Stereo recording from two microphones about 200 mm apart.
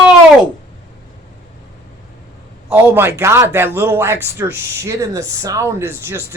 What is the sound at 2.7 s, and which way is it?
Speech, 10° right (ahead or behind).